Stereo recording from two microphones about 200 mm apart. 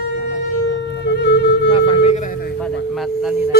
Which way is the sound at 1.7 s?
25° left (ahead or behind).